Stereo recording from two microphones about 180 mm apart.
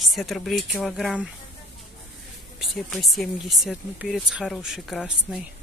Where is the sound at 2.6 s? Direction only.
Centre (ahead or behind).